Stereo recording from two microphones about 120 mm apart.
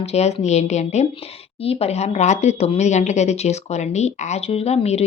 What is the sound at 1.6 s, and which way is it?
Speech, 55° left (ahead or behind).